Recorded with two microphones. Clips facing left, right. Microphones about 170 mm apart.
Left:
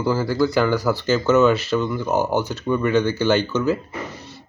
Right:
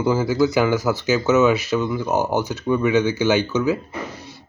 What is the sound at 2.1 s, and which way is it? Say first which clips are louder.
Speech: left 1 dB; 15° right (ahead or behind).